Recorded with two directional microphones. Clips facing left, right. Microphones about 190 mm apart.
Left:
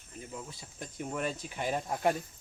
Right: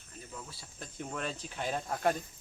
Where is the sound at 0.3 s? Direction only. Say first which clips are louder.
Left 3 dB; 15° left (ahead or behind).